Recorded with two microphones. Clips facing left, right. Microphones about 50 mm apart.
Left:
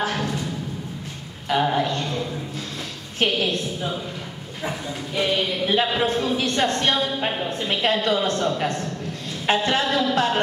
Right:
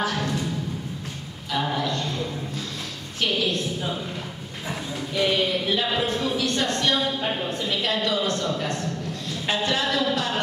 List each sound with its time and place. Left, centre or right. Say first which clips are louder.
0.0 s music: left 1 dB; left
1.5 s a sound: left 5 dB; left
4.6 s a woman's voice: left 2 dB; left